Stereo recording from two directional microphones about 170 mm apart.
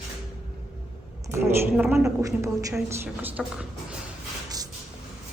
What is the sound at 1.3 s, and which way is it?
Speech, 5° right (ahead or behind).